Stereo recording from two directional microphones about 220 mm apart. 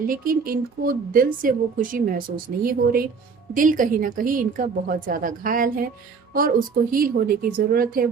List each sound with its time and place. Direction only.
0.1 s speech: 40° right (ahead or behind)
6.9 s speech: 40° right (ahead or behind)